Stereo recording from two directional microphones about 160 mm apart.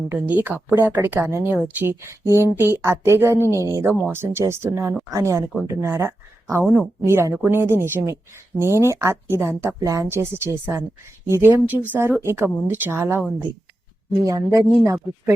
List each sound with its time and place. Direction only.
0.1 s a woman's voice: 10° right (ahead or behind)
14.3 s speech: 20° right (ahead or behind)